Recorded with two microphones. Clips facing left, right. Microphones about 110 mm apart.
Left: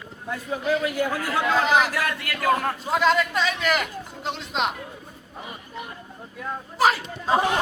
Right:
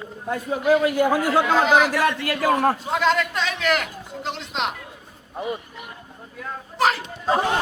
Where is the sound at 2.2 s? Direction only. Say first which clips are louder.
Right 3 dB; 30° right (ahead or behind).